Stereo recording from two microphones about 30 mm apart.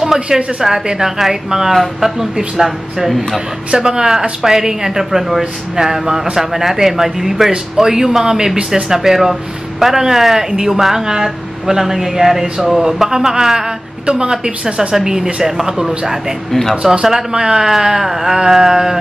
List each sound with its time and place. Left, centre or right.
0.0 s a woman's voice: right
14.0 s a woman's voice: right
17.0 s speech: right